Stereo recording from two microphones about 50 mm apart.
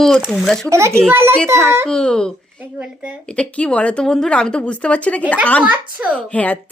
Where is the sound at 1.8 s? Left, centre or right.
Centre.